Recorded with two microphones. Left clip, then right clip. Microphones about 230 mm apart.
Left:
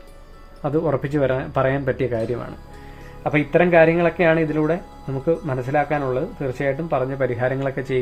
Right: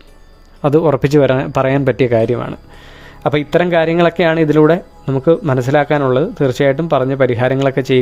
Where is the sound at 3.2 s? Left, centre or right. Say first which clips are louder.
Right 4 dB; right.